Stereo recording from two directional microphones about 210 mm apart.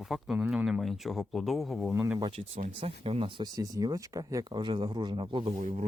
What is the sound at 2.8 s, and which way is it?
Speech, 25° right (ahead or behind).